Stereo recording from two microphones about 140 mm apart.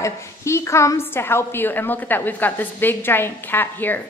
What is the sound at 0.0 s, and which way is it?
A woman's voice, 20° left (ahead or behind).